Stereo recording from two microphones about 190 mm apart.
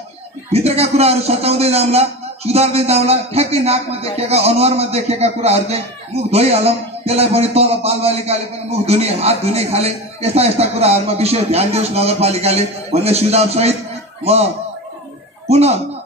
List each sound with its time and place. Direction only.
0.5 s a man's voice: 35° right (ahead or behind)